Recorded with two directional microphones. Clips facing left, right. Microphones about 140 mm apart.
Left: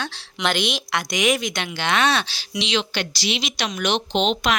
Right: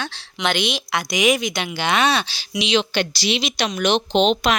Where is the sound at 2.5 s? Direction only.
15° right (ahead or behind).